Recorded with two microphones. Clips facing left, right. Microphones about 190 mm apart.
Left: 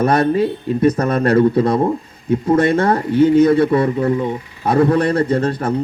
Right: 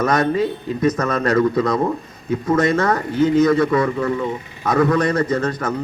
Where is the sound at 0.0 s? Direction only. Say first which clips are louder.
Left 3 dB; 30° left (ahead or behind).